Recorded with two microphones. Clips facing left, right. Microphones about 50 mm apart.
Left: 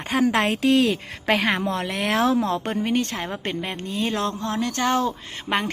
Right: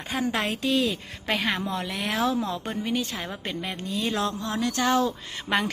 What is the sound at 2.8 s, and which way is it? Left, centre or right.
Speech, left.